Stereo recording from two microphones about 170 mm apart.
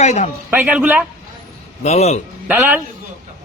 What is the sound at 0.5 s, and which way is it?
Speech, 10° right (ahead or behind).